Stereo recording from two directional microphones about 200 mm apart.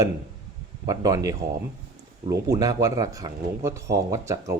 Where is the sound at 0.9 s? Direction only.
20° right (ahead or behind).